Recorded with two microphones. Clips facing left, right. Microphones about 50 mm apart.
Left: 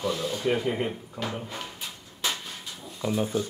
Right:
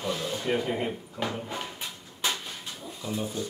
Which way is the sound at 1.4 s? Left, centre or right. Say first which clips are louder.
Right 2 dB; centre.